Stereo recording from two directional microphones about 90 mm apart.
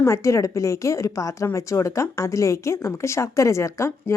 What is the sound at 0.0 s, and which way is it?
Speech, 30° left (ahead or behind).